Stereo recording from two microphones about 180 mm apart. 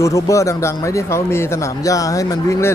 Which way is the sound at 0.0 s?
20° left (ahead or behind).